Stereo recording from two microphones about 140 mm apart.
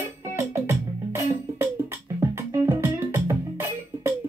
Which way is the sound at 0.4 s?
20° right (ahead or behind).